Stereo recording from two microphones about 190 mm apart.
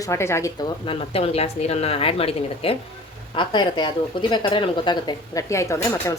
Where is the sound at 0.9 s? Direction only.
30° left (ahead or behind).